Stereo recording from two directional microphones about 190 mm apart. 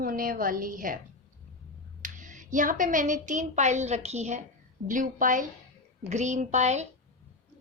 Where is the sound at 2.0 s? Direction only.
40° right (ahead or behind).